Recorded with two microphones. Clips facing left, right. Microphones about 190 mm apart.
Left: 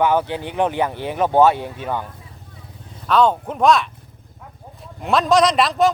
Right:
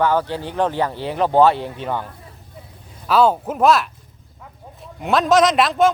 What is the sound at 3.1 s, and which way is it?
Speech, 5° right (ahead or behind).